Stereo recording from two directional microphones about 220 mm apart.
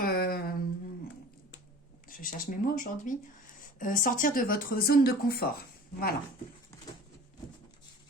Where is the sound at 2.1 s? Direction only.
40° left (ahead or behind).